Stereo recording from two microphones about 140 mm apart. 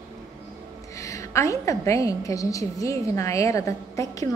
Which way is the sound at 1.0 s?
20° left (ahead or behind).